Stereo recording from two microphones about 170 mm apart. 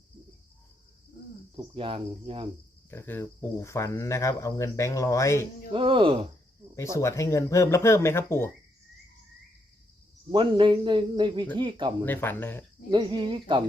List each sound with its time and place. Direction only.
1.5 s speech: 30° right (ahead or behind)
2.9 s speech: 15° left (ahead or behind)
5.7 s speech: 30° right (ahead or behind)
6.7 s speech: 15° left (ahead or behind)
10.3 s speech: 30° right (ahead or behind)
12.0 s speech: 10° left (ahead or behind)
12.9 s speech: 30° right (ahead or behind)